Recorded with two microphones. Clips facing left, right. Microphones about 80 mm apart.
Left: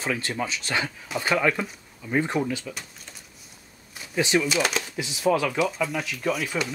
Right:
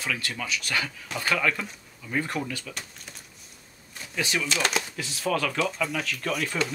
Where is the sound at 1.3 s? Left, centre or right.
Centre.